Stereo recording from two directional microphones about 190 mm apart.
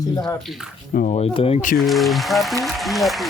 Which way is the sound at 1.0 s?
40° left (ahead or behind).